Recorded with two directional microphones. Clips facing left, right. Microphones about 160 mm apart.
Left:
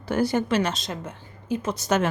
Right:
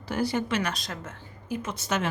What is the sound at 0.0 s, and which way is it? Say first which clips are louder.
Speech: left 4 dB; 50° left (ahead or behind).